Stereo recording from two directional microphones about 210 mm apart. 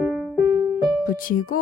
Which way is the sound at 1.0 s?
40° left (ahead or behind).